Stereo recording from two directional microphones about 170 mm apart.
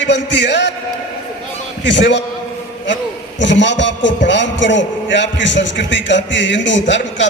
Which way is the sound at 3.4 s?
90° left.